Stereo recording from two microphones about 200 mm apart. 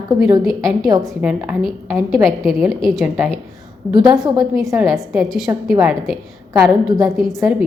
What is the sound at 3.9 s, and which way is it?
Speech, 20° right (ahead or behind).